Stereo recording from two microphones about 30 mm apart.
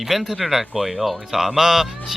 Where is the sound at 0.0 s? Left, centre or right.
Centre.